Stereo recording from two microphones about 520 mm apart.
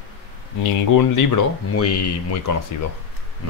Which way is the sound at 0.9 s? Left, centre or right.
Left.